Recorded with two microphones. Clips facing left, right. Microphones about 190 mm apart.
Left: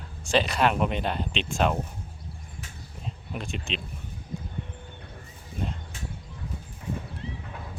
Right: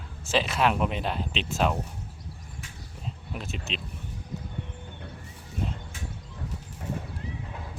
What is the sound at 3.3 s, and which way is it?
Speech, 5° right (ahead or behind).